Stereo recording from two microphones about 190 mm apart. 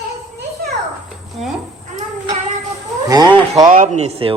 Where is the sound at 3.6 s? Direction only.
40° right (ahead or behind).